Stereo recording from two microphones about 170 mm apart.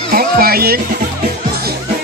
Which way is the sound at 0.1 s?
60° right (ahead or behind).